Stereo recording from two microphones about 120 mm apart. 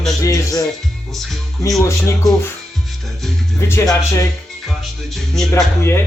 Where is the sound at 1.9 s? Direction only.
25° left (ahead or behind).